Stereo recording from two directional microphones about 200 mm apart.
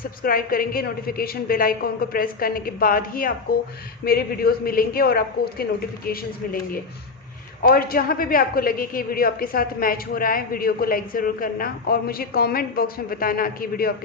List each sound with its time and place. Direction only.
0.2 s a woman's voice: 45° left (ahead or behind)
7.6 s a woman's voice: 45° left (ahead or behind)